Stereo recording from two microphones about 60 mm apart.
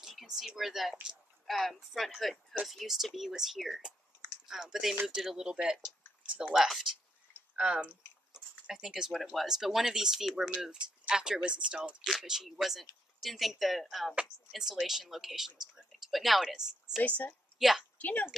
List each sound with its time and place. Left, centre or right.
0.0 s speech: centre
8.3 s a sound: centre
9.3 s speech: centre
12.0 s speech: centre
17.6 s a woman's voice: centre
17.9 s a woman's voice: left